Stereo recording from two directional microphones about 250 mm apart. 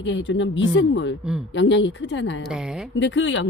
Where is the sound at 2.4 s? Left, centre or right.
Centre.